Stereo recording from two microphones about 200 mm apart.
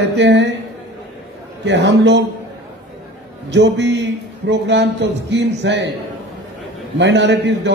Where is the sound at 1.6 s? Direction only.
60° right (ahead or behind).